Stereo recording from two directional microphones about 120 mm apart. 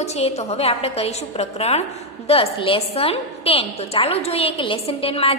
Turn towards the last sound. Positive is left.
turn(degrees=55)  # may be behind; listen again after turning